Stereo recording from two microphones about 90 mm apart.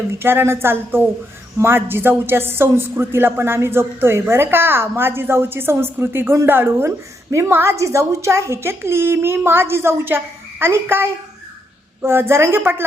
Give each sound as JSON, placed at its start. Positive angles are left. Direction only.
{"t": 0.1, "sound": "speech", "side_deg": -25}